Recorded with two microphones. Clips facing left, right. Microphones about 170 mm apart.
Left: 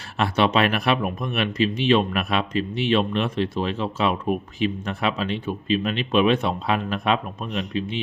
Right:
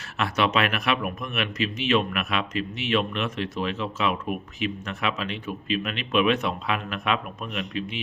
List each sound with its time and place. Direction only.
0.2 s speech: 30° left (ahead or behind)